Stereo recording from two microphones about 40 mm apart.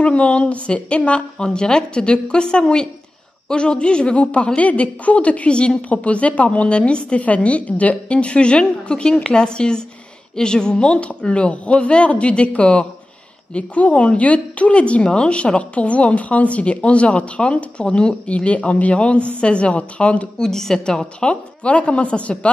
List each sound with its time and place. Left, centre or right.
0.0 s a woman's voice: left
7.2 s a woman's voice: left
20.3 s a woman's voice: centre
21.3 s a woman's voice: left